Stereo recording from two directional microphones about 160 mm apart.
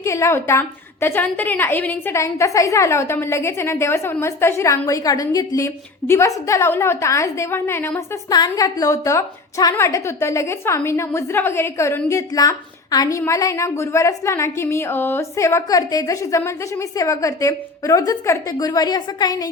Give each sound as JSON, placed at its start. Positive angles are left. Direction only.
{"t": 0.0, "sound": "a woman's voice", "side_deg": 15}
{"t": 8.3, "sound": "a woman's voice", "side_deg": 25}